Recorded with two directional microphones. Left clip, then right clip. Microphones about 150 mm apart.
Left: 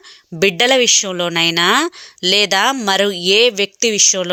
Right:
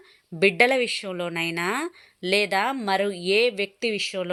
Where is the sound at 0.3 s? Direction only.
30° left (ahead or behind).